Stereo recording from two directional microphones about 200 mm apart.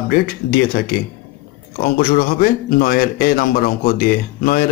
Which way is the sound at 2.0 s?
45° left (ahead or behind).